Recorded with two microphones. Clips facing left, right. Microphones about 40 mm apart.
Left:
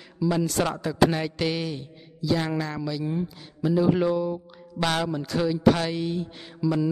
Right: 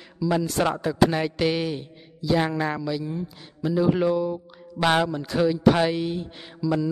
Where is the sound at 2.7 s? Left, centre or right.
Centre.